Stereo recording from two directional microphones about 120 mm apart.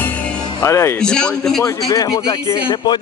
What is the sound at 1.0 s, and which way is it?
Speech, 5° left (ahead or behind).